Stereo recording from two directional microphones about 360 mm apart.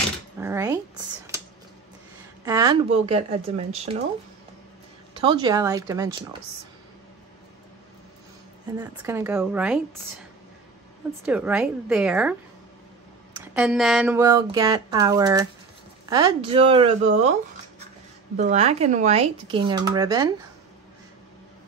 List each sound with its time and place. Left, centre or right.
0.4 s a sound: centre
2.4 s a sound: centre
3.1 s speech: centre
5.1 s speech: centre
8.7 s a woman's voice: centre
11.2 s a woman's voice: centre
13.6 s speech: centre